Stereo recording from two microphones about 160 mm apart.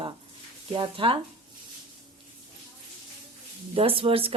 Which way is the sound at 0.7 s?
30° right (ahead or behind).